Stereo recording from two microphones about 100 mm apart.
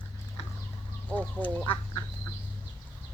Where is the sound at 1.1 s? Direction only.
15° left (ahead or behind).